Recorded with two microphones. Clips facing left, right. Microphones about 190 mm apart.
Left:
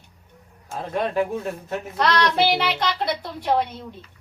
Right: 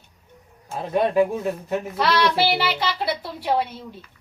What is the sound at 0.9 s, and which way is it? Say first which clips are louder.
A man's voice: right 4 dB; 10° right (ahead or behind).